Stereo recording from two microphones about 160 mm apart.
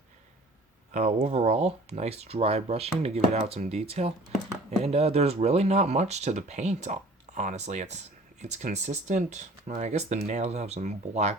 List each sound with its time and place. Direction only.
0.9 s speech: 45° right (ahead or behind)